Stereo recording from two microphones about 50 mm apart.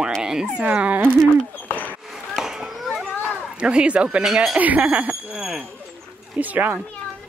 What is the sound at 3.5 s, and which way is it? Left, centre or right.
Speech, right.